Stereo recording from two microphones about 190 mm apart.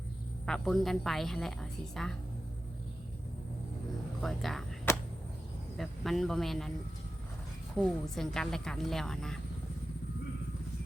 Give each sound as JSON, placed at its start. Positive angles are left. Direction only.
{"t": 0.4, "sound": "a woman's voice", "side_deg": 0}
{"t": 4.2, "sound": "a woman's voice", "side_deg": 0}
{"t": 4.9, "sound": "a sound", "side_deg": 15}
{"t": 5.7, "sound": "a woman's voice", "side_deg": 0}
{"t": 7.8, "sound": "a woman's voice", "side_deg": 5}